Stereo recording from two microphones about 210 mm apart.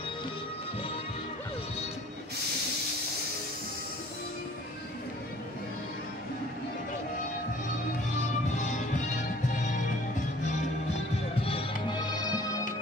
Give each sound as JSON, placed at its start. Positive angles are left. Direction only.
{"t": 8.5, "sound": "music", "side_deg": 35}
{"t": 11.4, "sound": "music", "side_deg": 25}